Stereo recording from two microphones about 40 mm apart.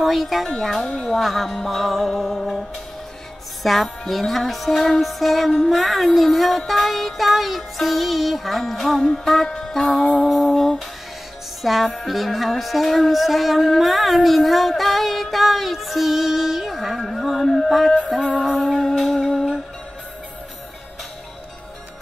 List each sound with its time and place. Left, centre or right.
0.0 s speech: centre
0.5 s music: centre
1.0 s speech: centre
3.6 s speech: centre
5.5 s music: centre
5.8 s speech: centre
9.5 s music: centre
10.2 s speech: centre
17.0 s music: centre